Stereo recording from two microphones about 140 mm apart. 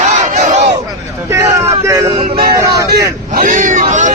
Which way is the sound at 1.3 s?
20° right (ahead or behind).